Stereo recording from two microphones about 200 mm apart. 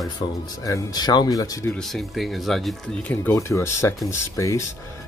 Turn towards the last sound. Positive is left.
turn(degrees=15)  # may be behind; listen again after turning